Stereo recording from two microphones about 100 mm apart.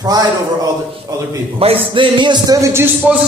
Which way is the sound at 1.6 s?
65° right (ahead or behind).